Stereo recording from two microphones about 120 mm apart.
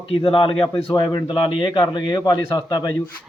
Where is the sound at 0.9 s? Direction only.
40° left (ahead or behind).